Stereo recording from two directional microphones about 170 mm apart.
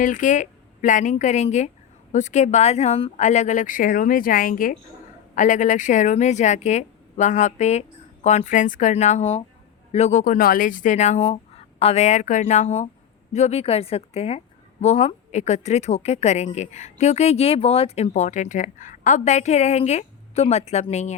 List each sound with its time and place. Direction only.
0.0 s a woman's voice: 50° left (ahead or behind)